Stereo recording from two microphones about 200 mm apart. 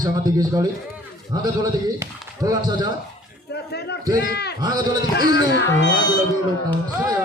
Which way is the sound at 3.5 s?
55° left (ahead or behind).